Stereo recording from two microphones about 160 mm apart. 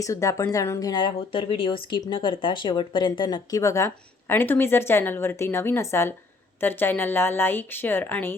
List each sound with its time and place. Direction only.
0.0 s a woman's voice: 20° left (ahead or behind)